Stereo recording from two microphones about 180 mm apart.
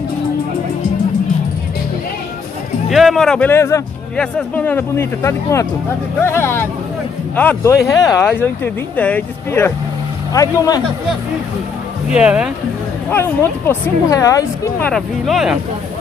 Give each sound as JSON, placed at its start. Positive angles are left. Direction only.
{"t": 2.9, "sound": "speech", "side_deg": 0}
{"t": 12.1, "sound": "speech", "side_deg": -5}
{"t": 13.7, "sound": "speech", "side_deg": 15}
{"t": 14.9, "sound": "speech", "side_deg": 0}